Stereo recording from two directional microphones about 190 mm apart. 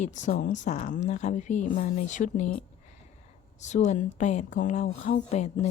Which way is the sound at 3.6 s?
40° left (ahead or behind).